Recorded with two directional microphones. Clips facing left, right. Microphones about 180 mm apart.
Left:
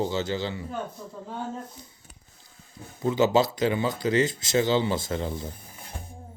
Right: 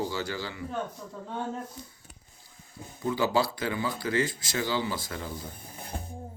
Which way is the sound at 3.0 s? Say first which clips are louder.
Left 5 dB; 20° left (ahead or behind).